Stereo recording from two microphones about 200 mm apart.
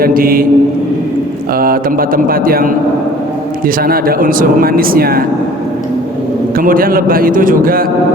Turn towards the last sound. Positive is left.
turn(degrees=-45)  # may be behind; listen again after turning